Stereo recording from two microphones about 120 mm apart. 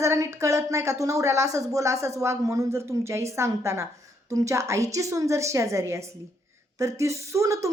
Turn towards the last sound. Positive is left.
turn(degrees=-25)  # may be behind; listen again after turning